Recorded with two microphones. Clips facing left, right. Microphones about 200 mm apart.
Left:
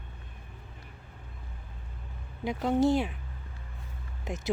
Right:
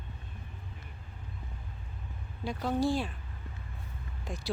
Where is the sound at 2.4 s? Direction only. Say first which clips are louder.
Left 5 dB; 20° left (ahead or behind).